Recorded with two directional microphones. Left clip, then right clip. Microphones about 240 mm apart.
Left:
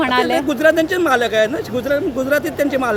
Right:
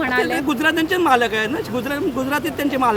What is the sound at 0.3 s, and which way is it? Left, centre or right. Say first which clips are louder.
A man's voice: left 5 dB; centre.